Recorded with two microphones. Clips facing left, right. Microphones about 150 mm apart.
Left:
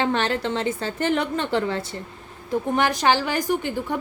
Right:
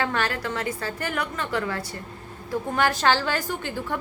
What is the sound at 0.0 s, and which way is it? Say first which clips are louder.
A woman's voice: left 4 dB; 25° left (ahead or behind).